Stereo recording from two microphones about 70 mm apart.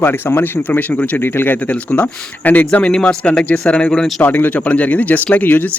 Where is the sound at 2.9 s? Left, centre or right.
Centre.